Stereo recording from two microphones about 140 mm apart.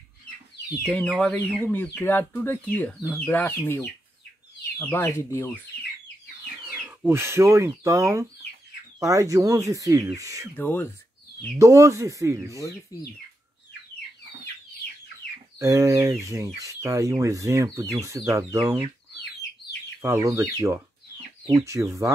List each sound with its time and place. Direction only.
0.8 s speech: 5° left (ahead or behind)
6.6 s speech: 15° right (ahead or behind)
10.5 s speech: 15° left (ahead or behind)
11.5 s speech: 20° right (ahead or behind)
15.6 s speech: 20° right (ahead or behind)
20.0 s speech: 20° right (ahead or behind)